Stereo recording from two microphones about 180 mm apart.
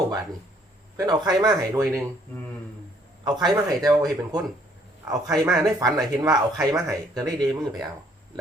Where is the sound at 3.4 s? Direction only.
20° right (ahead or behind).